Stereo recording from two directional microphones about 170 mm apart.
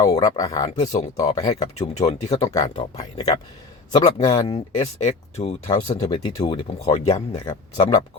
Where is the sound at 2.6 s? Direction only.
20° left (ahead or behind).